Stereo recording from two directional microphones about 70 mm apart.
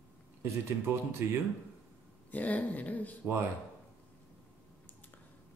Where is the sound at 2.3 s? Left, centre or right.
Left.